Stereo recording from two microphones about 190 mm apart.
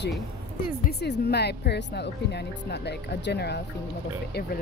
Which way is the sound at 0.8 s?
60° left (ahead or behind).